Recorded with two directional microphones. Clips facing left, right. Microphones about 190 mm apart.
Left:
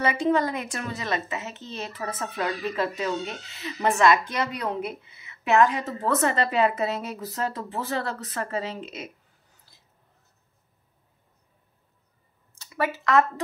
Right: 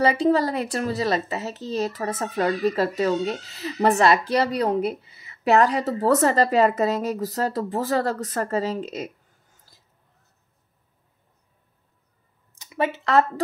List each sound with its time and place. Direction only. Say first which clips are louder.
0.0 s a woman's voice: right 4 dB; 35° right (ahead or behind)
12.5 s speech: right 3 dB; 20° right (ahead or behind)